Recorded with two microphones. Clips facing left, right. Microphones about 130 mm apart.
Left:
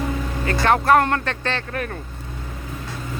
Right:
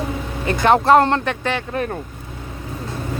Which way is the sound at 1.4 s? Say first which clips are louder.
Right 3 dB; 15° right (ahead or behind).